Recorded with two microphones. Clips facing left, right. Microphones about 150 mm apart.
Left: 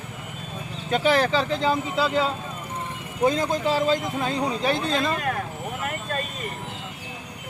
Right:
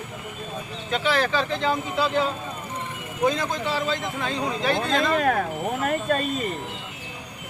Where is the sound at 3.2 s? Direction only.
40° left (ahead or behind).